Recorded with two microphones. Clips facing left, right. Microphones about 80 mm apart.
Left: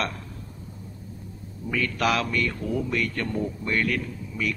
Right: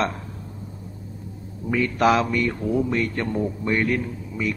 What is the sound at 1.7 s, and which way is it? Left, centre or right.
A man's voice, right.